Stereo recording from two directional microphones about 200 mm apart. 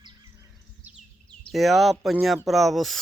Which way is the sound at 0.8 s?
10° right (ahead or behind).